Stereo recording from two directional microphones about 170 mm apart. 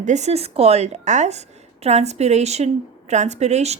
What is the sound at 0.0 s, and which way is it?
Speech, 40° right (ahead or behind).